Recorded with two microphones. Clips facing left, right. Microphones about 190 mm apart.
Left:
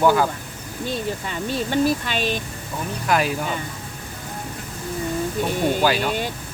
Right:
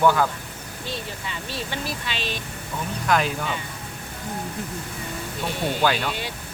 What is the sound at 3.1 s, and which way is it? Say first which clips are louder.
Speech: left 1 dB; 5° left (ahead or behind).